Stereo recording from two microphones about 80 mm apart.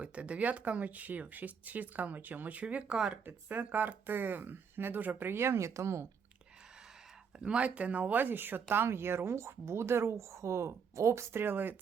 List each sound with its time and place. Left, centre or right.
0.0 s speech: centre
3.2 s speech: right
7.3 s a woman's voice: centre